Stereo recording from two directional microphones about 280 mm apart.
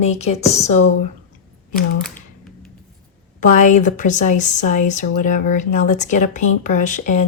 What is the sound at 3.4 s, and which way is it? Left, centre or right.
Speech, left.